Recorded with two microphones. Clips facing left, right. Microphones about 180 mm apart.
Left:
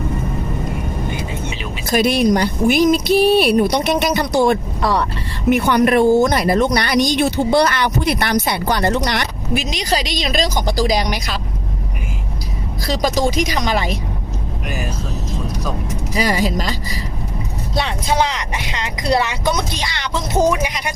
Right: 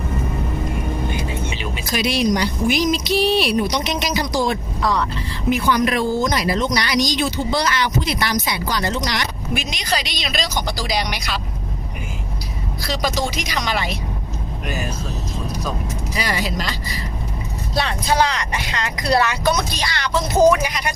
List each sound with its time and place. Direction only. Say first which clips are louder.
1.9 s speech: left 5 dB; 50° left (ahead or behind)
9.6 s speech: left 5 dB; 35° left (ahead or behind)
12.9 s speech: left 5 dB; 40° left (ahead or behind)
16.1 s speech: left 6 dB; 40° left (ahead or behind)
17.7 s speech: even; 20° left (ahead or behind)